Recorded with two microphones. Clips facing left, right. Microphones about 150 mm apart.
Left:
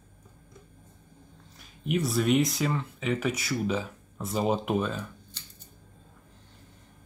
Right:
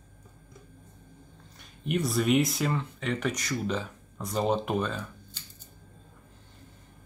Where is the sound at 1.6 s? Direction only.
Centre (ahead or behind).